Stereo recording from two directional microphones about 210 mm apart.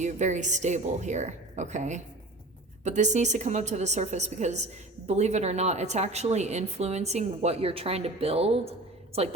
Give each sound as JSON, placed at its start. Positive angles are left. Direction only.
{"t": 0.0, "sound": "a woman's voice", "side_deg": -35}